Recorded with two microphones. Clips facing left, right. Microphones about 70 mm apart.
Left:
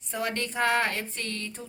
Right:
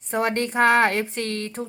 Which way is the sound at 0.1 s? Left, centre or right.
Right.